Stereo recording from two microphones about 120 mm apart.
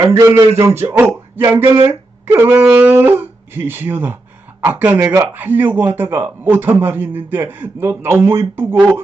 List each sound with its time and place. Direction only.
0.0 s a man's voice: 20° right (ahead or behind)